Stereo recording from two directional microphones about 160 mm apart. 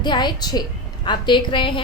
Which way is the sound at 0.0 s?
25° left (ahead or behind).